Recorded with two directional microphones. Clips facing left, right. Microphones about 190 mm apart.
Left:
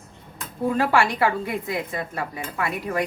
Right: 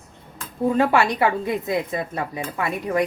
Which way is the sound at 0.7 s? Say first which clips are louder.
Right 1 dB; 20° right (ahead or behind).